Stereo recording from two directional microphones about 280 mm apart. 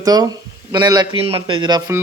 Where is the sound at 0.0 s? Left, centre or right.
Centre.